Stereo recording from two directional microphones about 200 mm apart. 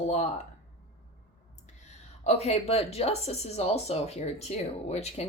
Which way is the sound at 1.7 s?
35° left (ahead or behind).